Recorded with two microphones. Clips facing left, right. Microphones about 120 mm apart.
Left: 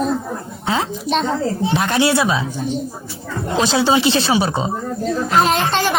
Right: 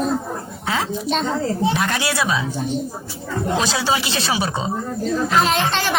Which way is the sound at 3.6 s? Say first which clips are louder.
Left 9 dB; 25° left (ahead or behind).